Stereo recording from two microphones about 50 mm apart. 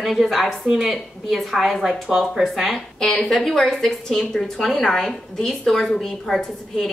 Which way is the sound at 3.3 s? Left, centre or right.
Centre.